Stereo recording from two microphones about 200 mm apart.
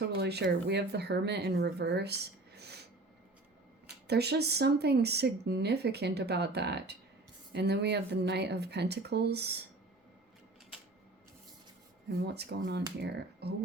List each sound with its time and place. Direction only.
0.0 s speech: 55° right (ahead or behind)
4.0 s speech: 55° right (ahead or behind)
12.2 s speech: 55° right (ahead or behind)